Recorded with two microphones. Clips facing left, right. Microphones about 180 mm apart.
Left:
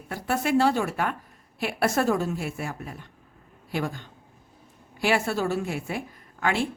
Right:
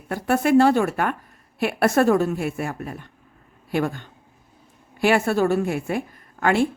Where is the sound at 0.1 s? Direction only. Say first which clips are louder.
Right 6 dB; 55° right (ahead or behind).